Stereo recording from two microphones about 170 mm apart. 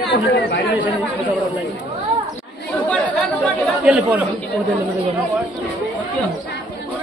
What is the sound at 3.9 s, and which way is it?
Speech, 5° right (ahead or behind).